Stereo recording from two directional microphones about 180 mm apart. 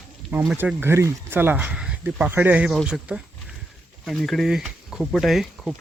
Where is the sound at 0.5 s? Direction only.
10° right (ahead or behind).